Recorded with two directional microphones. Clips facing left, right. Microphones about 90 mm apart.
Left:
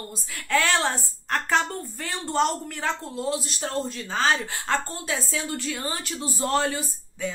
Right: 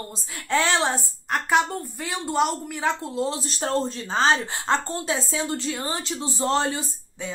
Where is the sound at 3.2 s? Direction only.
35° right (ahead or behind).